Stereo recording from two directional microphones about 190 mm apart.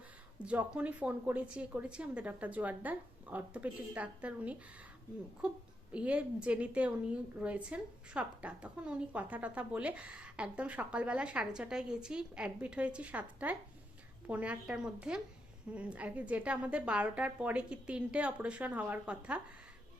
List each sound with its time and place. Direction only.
0.3 s a woman's voice: 5° right (ahead or behind)